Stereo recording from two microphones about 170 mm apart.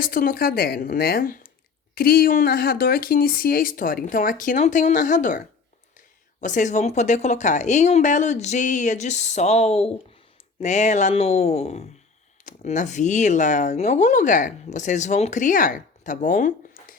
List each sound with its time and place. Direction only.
0.0 s speech: 60° left (ahead or behind)
6.4 s speech: 45° left (ahead or behind)